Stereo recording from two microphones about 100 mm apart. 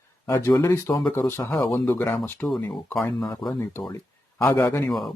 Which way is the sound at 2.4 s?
Centre (ahead or behind).